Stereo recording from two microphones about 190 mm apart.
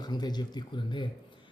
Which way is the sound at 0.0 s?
20° left (ahead or behind).